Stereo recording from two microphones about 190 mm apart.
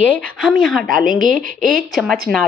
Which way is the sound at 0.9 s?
45° right (ahead or behind).